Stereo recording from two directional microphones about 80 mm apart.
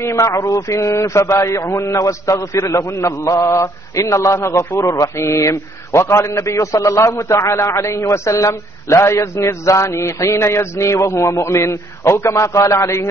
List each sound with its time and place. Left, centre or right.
0.0 s a man's voice: left